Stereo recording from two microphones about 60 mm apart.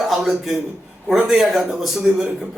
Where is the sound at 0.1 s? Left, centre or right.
Centre.